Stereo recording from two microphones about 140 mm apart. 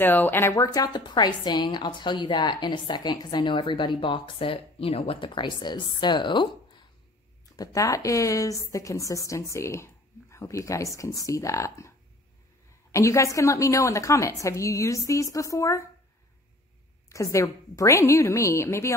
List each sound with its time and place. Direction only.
0.0 s a woman's voice: 15° left (ahead or behind)
12.9 s a woman's voice: 20° left (ahead or behind)
17.1 s a woman's voice: 25° left (ahead or behind)